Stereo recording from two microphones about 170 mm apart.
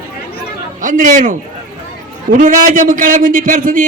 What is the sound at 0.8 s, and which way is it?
A man's voice, 50° right (ahead or behind).